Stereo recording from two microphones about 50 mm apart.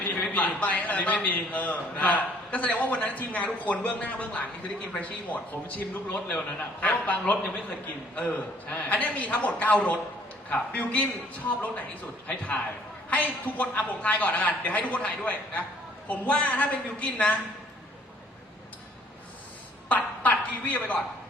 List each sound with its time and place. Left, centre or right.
0.1 s a man's voice: left
12.3 s a woman's voice: left
19.9 s a woman's voice: left